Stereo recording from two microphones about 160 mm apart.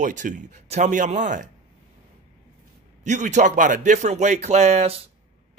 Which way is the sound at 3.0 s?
50° right (ahead or behind).